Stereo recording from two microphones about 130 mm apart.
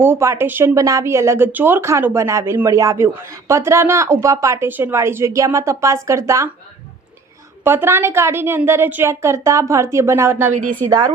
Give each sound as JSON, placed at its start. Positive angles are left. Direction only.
{"t": 0.0, "sound": "speech", "side_deg": -20}
{"t": 7.6, "sound": "speech", "side_deg": -20}
{"t": 10.5, "sound": "a woman's voice", "side_deg": -90}
{"t": 10.8, "sound": "speech", "side_deg": -30}